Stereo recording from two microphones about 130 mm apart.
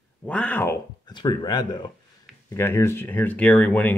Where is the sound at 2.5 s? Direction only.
20° left (ahead or behind).